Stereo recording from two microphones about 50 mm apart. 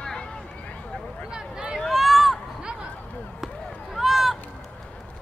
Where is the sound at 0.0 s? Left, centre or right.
Centre.